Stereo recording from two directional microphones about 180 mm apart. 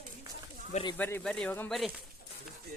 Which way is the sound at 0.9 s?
10° left (ahead or behind).